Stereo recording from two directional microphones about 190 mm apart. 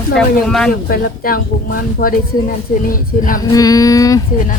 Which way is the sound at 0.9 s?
50° left (ahead or behind).